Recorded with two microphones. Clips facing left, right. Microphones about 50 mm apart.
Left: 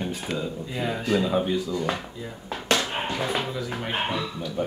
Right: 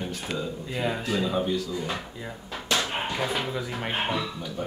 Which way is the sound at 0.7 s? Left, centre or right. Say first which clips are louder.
Right 1 dB; centre.